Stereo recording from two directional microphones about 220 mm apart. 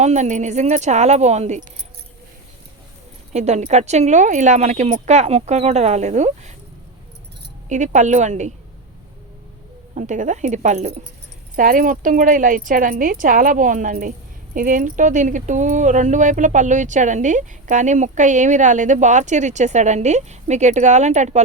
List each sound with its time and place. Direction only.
0.0 s speech: 30° right (ahead or behind)
3.3 s speech: 30° right (ahead or behind)
7.7 s speech: 35° right (ahead or behind)
9.9 s speech: 35° right (ahead or behind)